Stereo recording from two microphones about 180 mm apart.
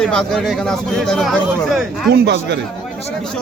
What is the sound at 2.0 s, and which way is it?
Speech, 70° right (ahead or behind).